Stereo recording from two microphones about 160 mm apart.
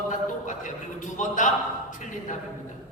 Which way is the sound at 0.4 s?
50° left (ahead or behind).